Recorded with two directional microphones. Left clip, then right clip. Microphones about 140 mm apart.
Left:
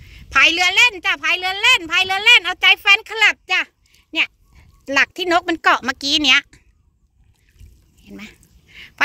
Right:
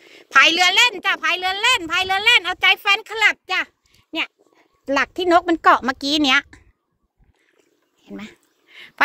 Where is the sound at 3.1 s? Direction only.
10° left (ahead or behind).